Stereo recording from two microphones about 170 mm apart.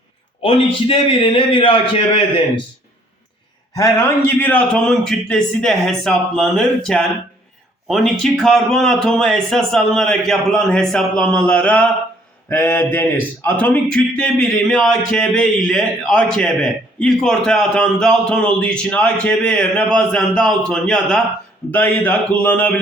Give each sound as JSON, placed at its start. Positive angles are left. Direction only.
{"t": 0.4, "sound": "a man's voice", "side_deg": 30}
{"t": 3.8, "sound": "speech", "side_deg": 10}